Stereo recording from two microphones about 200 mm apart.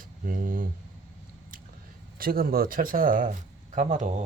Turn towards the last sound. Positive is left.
turn(degrees=-35)  # may be behind; listen again after turning